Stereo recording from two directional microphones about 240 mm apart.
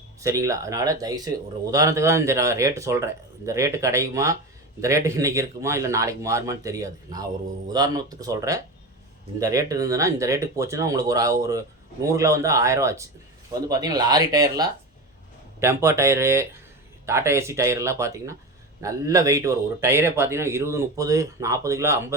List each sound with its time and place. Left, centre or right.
0.2 s a man's voice: centre